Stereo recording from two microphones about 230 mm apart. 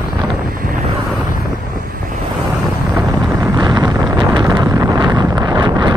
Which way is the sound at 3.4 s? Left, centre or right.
Centre.